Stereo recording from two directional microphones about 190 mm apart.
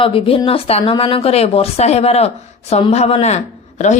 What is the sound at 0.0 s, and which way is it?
Speech, 30° left (ahead or behind).